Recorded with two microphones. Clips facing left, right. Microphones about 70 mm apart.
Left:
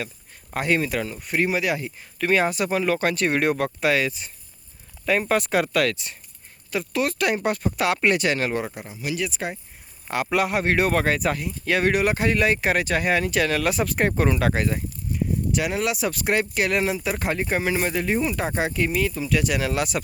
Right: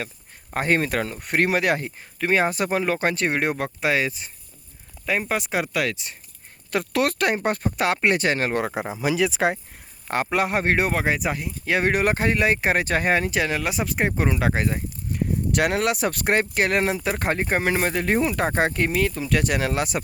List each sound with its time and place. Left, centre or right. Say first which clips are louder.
0.5 s speech: right 1 dB; right
0.8 s speech: right 1 dB; right
2.1 s speech: even; right
5.0 s speech: left 3 dB; centre
6.7 s speech: right 2 dB; right
7.4 s speech: even; right
8.5 s speech: right 3 dB; right
9.4 s speech: right 8 dB; right
10.2 s speech: left 1 dB; right
15.1 s speech: right 1 dB; right